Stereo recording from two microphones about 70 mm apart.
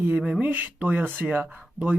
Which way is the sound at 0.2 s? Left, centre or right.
Centre.